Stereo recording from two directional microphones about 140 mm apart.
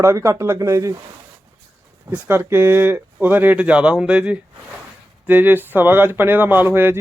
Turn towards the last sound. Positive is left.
turn(degrees=-15)  # may be behind; listen again after turning